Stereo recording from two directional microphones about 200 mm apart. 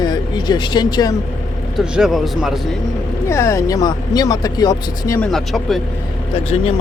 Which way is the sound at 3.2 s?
15° left (ahead or behind).